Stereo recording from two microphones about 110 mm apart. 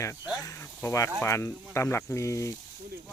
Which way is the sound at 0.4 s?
25° left (ahead or behind).